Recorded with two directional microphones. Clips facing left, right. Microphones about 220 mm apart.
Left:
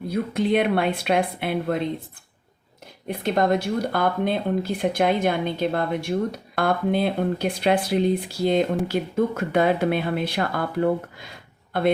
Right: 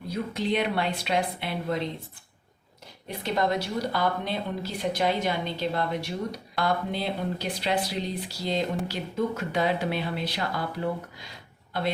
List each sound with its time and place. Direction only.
0.1 s a woman's voice: 55° left (ahead or behind)
3.1 s speech: 50° left (ahead or behind)